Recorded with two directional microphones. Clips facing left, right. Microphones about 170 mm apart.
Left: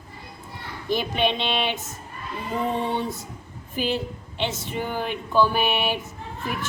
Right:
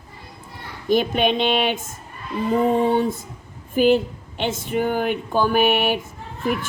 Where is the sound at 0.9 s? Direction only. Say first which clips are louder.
Right 5 dB; 50° right (ahead or behind).